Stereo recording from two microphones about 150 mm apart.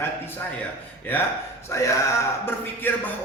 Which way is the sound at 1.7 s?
20° left (ahead or behind).